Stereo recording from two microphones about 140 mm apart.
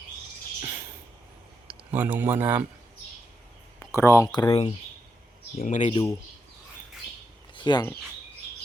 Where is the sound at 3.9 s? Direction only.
20° left (ahead or behind).